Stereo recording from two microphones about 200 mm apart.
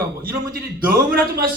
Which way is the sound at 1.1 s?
45° right (ahead or behind).